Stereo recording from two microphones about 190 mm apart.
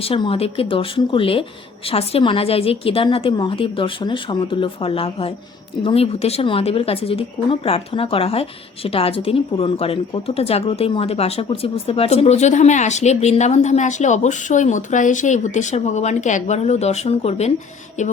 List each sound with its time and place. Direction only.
0.0 s a woman's voice: 30° left (ahead or behind)